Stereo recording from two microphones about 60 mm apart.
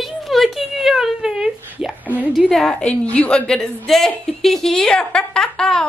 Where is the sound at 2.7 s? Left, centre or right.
Centre.